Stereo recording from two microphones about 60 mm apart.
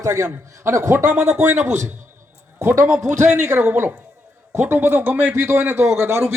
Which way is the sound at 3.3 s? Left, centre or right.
Right.